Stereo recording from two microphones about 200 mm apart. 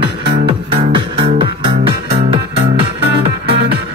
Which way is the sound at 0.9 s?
25° right (ahead or behind).